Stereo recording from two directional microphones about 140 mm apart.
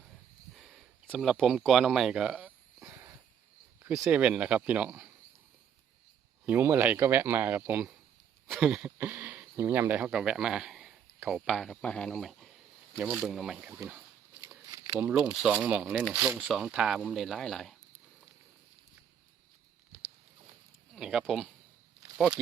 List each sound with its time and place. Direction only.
0.5 s a sound: centre (ahead or behind)
2.9 s a sound: 20° right (ahead or behind)
4.1 s speech: 10° right (ahead or behind)
6.4 s speech: 15° right (ahead or behind)
11.4 s speech: centre (ahead or behind)
14.7 s a sound: 25° right (ahead or behind)
15.0 s speech: 10° right (ahead or behind)
16.5 s speech: 5° right (ahead or behind)
20.9 s speech: 5° right (ahead or behind)